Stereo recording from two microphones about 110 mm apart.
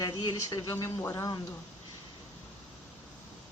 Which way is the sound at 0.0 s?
40° left (ahead or behind).